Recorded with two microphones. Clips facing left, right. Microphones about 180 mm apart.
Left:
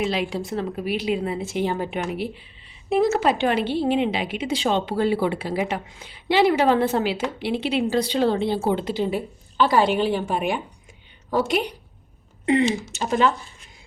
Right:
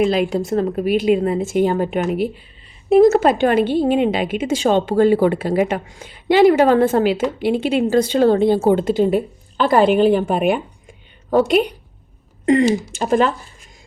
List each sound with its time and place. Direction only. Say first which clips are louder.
0.1 s a woman's voice: right 8 dB; 50° right (ahead or behind)